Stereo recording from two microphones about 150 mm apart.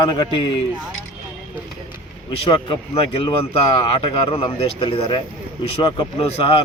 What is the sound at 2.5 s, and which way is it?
Speech, 35° left (ahead or behind).